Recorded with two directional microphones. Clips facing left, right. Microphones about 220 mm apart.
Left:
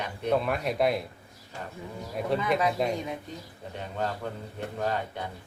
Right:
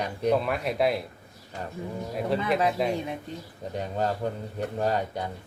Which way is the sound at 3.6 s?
40° right (ahead or behind).